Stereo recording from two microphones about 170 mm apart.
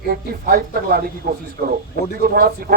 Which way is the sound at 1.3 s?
50° right (ahead or behind).